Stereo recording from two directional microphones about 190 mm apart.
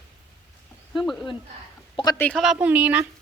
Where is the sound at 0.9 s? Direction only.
Centre (ahead or behind).